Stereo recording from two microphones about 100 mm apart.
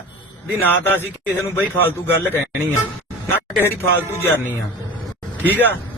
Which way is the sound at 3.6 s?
25° left (ahead or behind).